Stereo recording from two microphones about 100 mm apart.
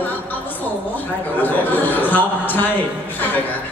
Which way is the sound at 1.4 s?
20° left (ahead or behind).